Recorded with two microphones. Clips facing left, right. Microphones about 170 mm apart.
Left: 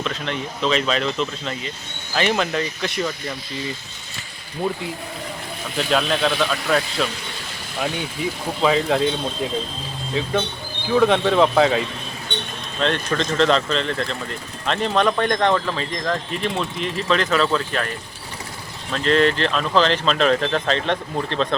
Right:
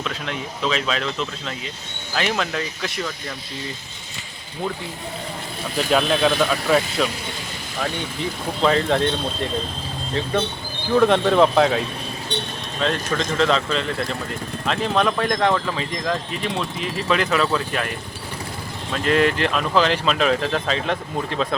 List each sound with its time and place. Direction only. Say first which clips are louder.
0.0 s speech: left 2 dB; 5° right (ahead or behind)
5.7 s speech: right 1 dB; 5° right (ahead or behind)
8.6 s speech: even; 5° left (ahead or behind)
10.9 s speech: right 1 dB; centre (ahead or behind)
12.3 s speech: right 2 dB; 35° right (ahead or behind)
12.8 s speech: left 1 dB; 5° right (ahead or behind)
19.0 s speech: left 1 dB; 10° right (ahead or behind)